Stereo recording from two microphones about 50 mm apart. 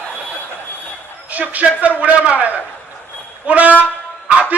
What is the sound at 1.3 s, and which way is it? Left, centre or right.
A man's voice, right.